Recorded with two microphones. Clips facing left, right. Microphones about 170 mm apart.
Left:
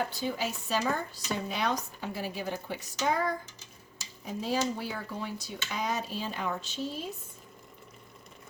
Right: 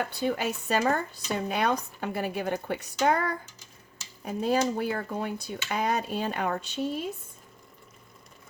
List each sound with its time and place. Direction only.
0.0 s speech: 60° right (ahead or behind)